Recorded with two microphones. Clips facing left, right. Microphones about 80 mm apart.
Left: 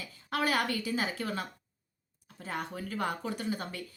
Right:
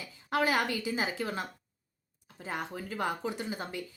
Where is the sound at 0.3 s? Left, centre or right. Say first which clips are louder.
Right 2 dB; right.